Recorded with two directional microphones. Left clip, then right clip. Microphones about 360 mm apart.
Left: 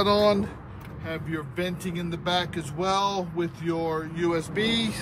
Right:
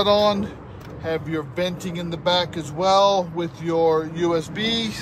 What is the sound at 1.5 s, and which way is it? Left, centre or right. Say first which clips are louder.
Speech: right 5 dB; right.